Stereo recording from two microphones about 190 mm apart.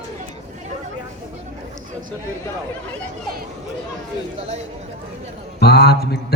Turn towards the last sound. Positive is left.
turn(degrees=60)  # may be behind; listen again after turning